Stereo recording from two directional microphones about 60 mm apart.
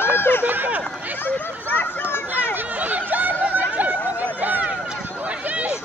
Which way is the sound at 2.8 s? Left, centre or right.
Right.